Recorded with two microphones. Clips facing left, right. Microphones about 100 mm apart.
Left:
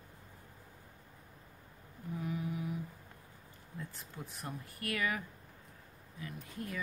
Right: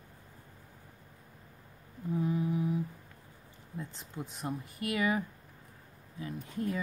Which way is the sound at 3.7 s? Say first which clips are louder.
Right 5 dB; 20° right (ahead or behind).